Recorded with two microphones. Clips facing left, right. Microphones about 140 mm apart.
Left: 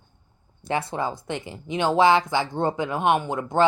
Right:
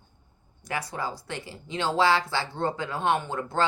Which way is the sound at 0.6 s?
25° left (ahead or behind).